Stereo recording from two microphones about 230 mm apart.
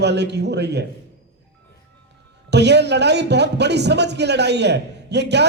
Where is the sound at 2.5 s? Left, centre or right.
Right.